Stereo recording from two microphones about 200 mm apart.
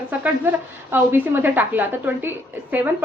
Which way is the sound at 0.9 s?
10° right (ahead or behind).